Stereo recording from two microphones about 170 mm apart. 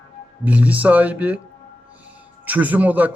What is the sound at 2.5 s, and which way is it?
Speech, 10° right (ahead or behind).